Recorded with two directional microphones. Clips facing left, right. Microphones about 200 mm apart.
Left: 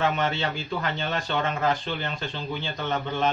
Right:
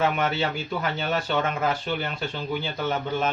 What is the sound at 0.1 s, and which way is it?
A man's voice, 5° right (ahead or behind).